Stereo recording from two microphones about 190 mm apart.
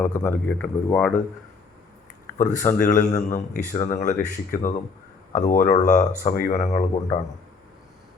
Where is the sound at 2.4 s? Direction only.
40° left (ahead or behind).